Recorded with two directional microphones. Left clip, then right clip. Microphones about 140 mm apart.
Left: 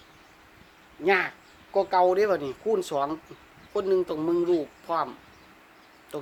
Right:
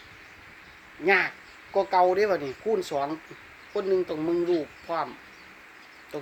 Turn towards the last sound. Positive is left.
turn(degrees=15)  # may be behind; listen again after turning